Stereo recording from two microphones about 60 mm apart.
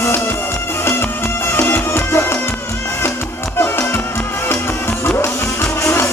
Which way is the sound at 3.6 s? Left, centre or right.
Left.